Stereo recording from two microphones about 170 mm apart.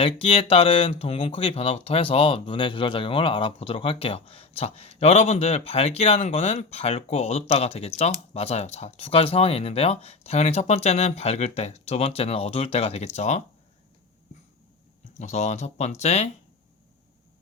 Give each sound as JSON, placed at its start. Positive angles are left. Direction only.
{"t": 0.0, "sound": "speech", "side_deg": 35}
{"t": 15.2, "sound": "speech", "side_deg": 40}